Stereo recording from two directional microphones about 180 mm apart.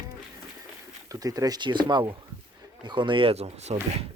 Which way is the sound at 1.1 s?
20° right (ahead or behind).